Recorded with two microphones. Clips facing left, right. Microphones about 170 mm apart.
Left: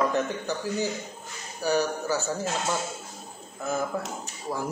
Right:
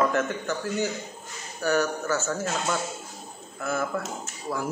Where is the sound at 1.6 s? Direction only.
10° left (ahead or behind).